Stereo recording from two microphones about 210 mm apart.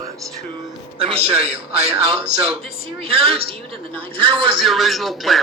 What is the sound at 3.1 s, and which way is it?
A man's voice, 25° right (ahead or behind).